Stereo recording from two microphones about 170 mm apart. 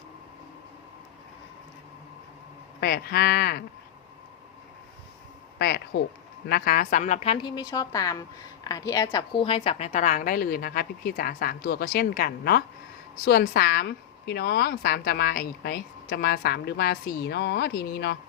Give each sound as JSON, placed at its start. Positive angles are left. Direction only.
{"t": 2.8, "sound": "a woman's voice", "side_deg": 70}
{"t": 5.5, "sound": "speech", "side_deg": 75}
{"t": 6.5, "sound": "a woman's voice", "side_deg": 60}